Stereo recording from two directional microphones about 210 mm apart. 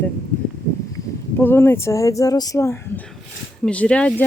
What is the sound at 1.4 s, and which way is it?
Speech, 10° left (ahead or behind).